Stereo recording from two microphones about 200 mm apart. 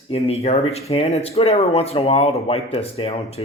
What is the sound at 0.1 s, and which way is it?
Speech, 30° left (ahead or behind).